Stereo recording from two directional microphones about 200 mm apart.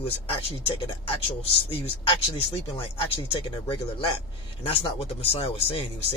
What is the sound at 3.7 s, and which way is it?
Speech, 25° left (ahead or behind).